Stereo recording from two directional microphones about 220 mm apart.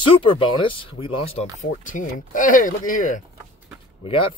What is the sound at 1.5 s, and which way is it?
Speech, 35° left (ahead or behind).